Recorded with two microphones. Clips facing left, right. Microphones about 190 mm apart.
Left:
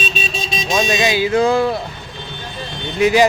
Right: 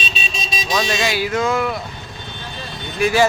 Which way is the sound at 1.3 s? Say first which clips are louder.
Left 6 dB; 30° left (ahead or behind).